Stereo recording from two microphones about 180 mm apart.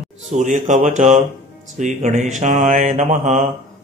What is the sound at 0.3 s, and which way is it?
Speech, 45° right (ahead or behind).